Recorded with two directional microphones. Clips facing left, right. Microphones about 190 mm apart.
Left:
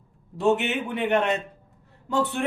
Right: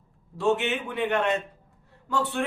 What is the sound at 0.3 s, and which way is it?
A man's voice, 20° left (ahead or behind).